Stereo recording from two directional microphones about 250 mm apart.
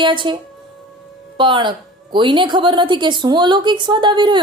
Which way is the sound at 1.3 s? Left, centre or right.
Centre.